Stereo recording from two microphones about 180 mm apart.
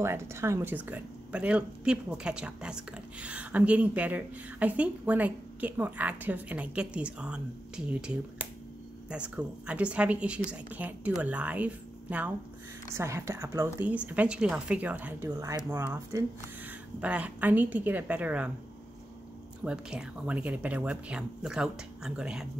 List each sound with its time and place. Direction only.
0.0 s speech: 15° right (ahead or behind)
19.6 s speech: 5° right (ahead or behind)